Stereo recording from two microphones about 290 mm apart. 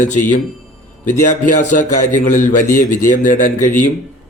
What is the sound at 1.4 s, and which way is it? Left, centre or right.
A man's voice, left.